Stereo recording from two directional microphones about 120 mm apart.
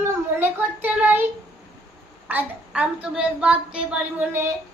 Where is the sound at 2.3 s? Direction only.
15° right (ahead or behind).